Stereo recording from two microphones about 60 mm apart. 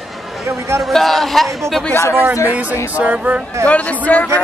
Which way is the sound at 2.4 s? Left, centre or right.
Right.